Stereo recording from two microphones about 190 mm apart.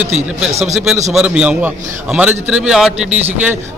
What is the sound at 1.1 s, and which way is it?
A man's voice, 5° right (ahead or behind).